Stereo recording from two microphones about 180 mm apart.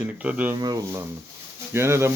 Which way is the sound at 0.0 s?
10° right (ahead or behind).